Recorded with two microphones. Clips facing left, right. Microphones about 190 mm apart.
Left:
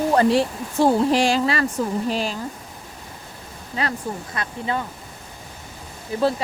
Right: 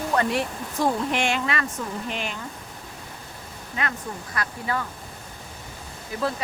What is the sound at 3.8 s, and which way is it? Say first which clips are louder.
Speech: left 4 dB; 30° left (ahead or behind).